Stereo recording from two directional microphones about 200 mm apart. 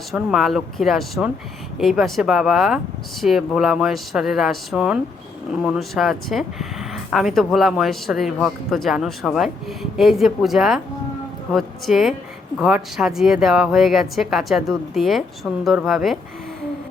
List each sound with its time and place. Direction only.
0.1 s speech: centre (ahead or behind)